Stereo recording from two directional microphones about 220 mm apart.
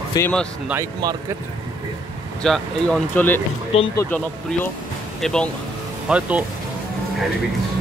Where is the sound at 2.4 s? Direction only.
5° left (ahead or behind).